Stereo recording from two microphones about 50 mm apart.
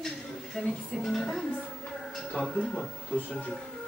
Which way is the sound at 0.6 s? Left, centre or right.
Centre.